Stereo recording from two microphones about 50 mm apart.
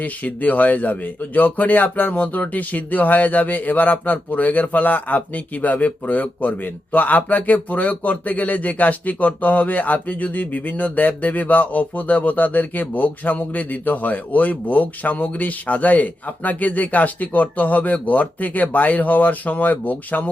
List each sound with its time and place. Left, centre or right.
0.0 s speech: left